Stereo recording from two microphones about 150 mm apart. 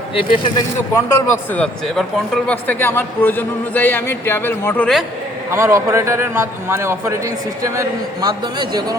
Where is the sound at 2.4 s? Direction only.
10° left (ahead or behind).